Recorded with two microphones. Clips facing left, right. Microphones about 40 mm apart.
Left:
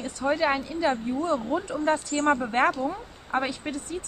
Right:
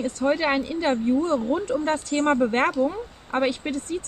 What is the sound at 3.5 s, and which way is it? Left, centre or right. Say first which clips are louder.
Speech: right 5 dB; right.